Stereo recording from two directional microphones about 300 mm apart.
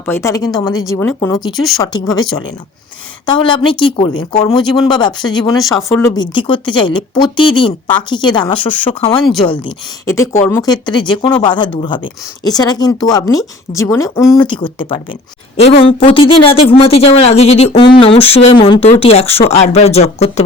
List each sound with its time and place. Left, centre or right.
0.0 s speech: centre
3.2 s speech: centre